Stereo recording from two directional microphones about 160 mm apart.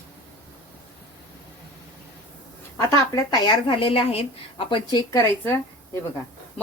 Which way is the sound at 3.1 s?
25° left (ahead or behind).